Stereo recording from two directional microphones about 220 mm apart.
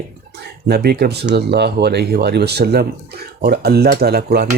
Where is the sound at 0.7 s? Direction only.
45° right (ahead or behind).